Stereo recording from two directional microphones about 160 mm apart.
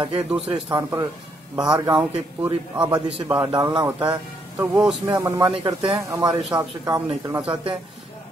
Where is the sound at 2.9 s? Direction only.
35° right (ahead or behind); by 4.1 s 20° right (ahead or behind).